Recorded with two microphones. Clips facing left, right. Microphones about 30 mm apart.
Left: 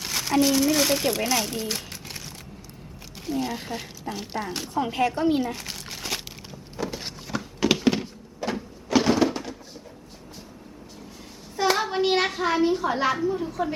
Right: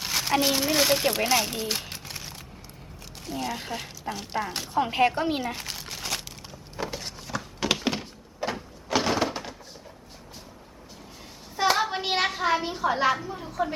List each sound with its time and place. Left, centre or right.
0.0 s speech: centre
3.2 s speech: centre
4.8 s speech: right
5.6 s crumpling: centre
6.8 s a sound: centre
7.3 s a sound: centre
11.5 s a child's voice: centre